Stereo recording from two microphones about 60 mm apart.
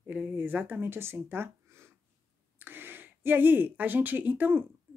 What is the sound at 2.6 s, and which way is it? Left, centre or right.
Speech, right.